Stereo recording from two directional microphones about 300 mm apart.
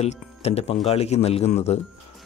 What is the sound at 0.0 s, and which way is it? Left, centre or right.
Speech, left.